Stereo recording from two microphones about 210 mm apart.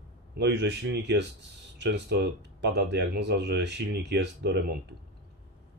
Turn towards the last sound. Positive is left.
turn(degrees=-55)  # may be behind; listen again after turning